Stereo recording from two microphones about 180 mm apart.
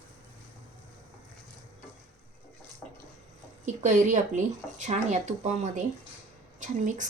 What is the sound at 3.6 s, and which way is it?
A woman's voice, 45° right (ahead or behind).